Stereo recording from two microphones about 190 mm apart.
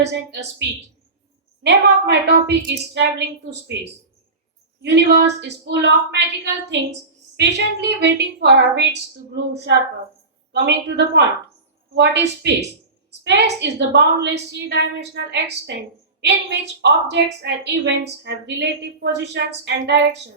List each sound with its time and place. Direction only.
0.0 s a woman's voice: 65° right (ahead or behind)
4.8 s a woman's voice: 65° right (ahead or behind)